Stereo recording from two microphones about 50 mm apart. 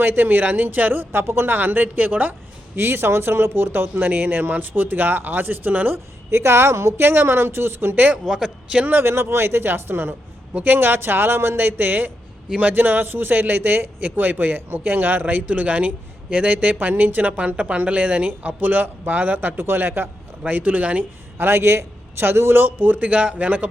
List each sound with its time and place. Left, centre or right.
0.0 s a man's voice: right
1.5 s a man's voice: right
2.7 s speech: right
6.3 s speech: right
8.2 s speech: centre
8.4 s a man's voice: right
8.9 s speech: right
10.5 s a man's voice: right
16.7 s a man's voice: right
20.4 s a man's voice: right
21.3 s speech: right
23.0 s a man's voice: right